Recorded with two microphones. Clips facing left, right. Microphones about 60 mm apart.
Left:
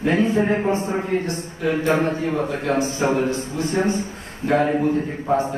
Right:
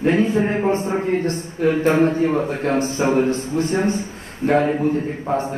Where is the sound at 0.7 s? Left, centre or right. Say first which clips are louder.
Right 2 dB; right.